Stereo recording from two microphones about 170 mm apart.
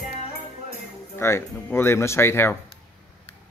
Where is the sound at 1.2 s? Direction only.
15° left (ahead or behind).